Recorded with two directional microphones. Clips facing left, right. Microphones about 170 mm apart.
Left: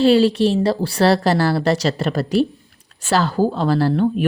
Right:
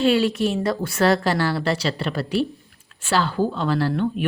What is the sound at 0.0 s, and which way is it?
Speech, 30° left (ahead or behind).